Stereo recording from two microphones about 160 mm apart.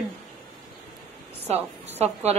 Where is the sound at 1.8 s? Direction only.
40° right (ahead or behind).